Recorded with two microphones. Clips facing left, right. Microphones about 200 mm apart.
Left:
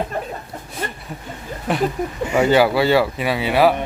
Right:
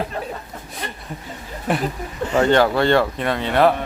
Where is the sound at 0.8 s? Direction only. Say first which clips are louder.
Left 4 dB; 45° left (ahead or behind).